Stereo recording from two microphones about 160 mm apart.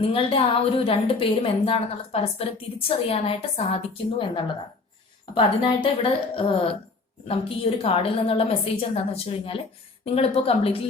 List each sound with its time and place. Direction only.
0.0 s a woman's voice: 35° left (ahead or behind)
5.3 s a woman's voice: 35° left (ahead or behind)